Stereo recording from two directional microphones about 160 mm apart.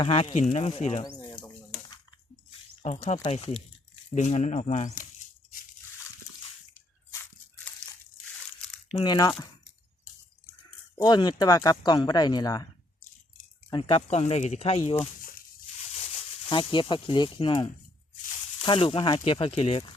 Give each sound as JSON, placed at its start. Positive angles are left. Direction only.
{"t": 0.0, "sound": "speech", "side_deg": 35}
{"t": 1.2, "sound": "bird", "side_deg": 30}
{"t": 2.8, "sound": "speech", "side_deg": 45}
{"t": 7.1, "sound": "a sound", "side_deg": 10}
{"t": 8.9, "sound": "speech", "side_deg": 30}
{"t": 10.9, "sound": "speech", "side_deg": 25}
{"t": 13.7, "sound": "speech", "side_deg": 35}
{"t": 16.5, "sound": "speech", "side_deg": 30}